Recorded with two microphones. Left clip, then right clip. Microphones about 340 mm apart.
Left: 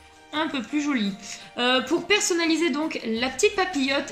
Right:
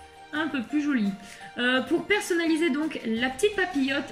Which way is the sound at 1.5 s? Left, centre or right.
Centre.